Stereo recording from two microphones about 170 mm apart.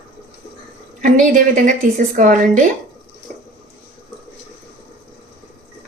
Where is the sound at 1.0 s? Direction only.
50° right (ahead or behind).